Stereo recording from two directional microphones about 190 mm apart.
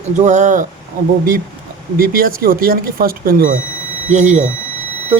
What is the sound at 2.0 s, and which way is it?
Speech, 50° right (ahead or behind).